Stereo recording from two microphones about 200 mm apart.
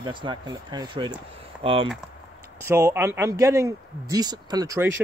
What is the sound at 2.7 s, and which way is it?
Speech, 10° right (ahead or behind).